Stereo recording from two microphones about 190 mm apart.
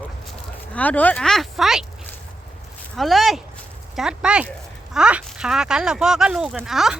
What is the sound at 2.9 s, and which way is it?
Speech, centre (ahead or behind).